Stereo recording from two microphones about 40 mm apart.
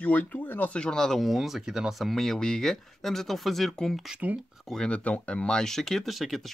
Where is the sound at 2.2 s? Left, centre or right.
Centre.